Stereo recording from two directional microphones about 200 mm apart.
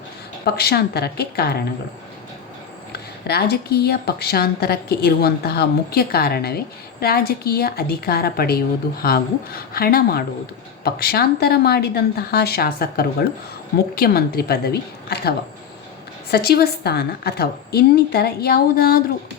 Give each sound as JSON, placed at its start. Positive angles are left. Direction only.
{"t": 0.4, "sound": "a woman's voice", "side_deg": 50}
{"t": 2.9, "sound": "a woman's voice", "side_deg": 50}